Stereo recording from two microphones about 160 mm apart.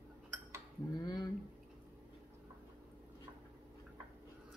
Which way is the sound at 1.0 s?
25° left (ahead or behind).